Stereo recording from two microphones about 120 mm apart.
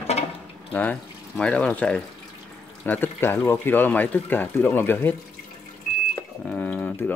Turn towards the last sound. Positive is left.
turn(degrees=15)  # may be behind; listen again after turning